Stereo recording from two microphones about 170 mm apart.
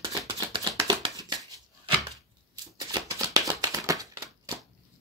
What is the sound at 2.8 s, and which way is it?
Shuffling cards, 20° right (ahead or behind).